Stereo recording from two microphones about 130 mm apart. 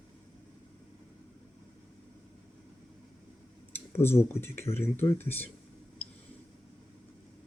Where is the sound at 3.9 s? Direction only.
20° left (ahead or behind).